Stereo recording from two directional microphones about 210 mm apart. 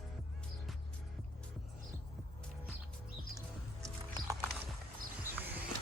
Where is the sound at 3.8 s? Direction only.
15° right (ahead or behind).